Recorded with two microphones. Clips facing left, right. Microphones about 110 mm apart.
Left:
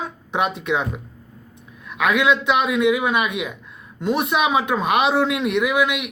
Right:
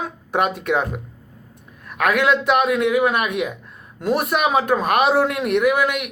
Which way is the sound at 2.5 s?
50° right (ahead or behind).